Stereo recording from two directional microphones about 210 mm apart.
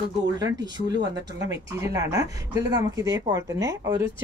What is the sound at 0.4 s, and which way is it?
Speech, 20° right (ahead or behind).